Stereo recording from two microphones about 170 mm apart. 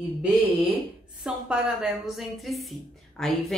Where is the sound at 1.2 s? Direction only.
5° right (ahead or behind).